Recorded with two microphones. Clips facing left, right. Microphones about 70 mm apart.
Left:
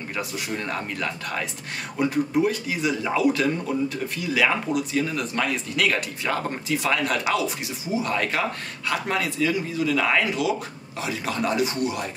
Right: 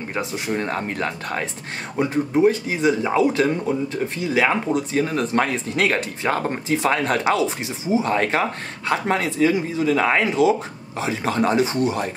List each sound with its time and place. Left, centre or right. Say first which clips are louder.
0.1 s speech: right 5 dB; right